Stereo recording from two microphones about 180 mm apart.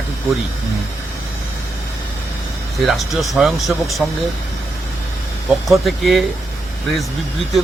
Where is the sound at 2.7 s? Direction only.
Centre (ahead or behind).